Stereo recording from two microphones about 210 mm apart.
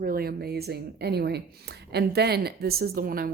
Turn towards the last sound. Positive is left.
turn(degrees=-45)  # may be behind; listen again after turning